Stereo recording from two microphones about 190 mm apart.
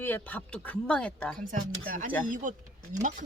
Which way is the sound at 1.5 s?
45° right (ahead or behind).